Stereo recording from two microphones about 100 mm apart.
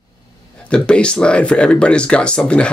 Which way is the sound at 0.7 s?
10° left (ahead or behind).